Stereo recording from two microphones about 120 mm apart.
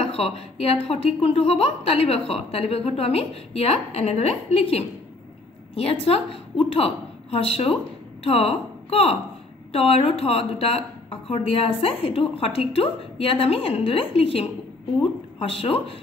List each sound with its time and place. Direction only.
0.0 s a woman's voice: 55° left (ahead or behind)